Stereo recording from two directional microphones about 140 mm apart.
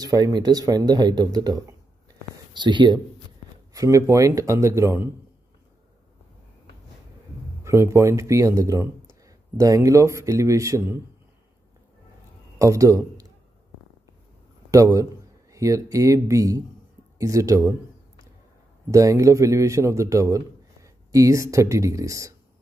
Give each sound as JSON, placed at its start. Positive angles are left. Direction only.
{"t": 0.0, "sound": "a man's voice", "side_deg": -30}
{"t": 3.7, "sound": "a man's voice", "side_deg": -25}
{"t": 7.6, "sound": "a man's voice", "side_deg": -20}
{"t": 12.5, "sound": "a man's voice", "side_deg": -25}
{"t": 14.7, "sound": "a man's voice", "side_deg": -25}
{"t": 18.9, "sound": "a man's voice", "side_deg": -25}